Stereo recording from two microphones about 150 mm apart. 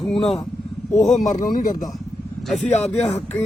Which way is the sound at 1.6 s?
60° left (ahead or behind).